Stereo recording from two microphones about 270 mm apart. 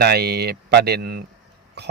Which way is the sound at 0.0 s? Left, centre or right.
Right.